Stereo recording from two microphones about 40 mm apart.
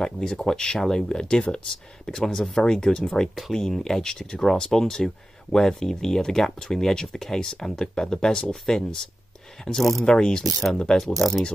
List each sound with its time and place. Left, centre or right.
0.0 s speech: centre
2.6 s speech: left
9.7 s speech: left
10.0 s speech: centre
10.4 s speech: centre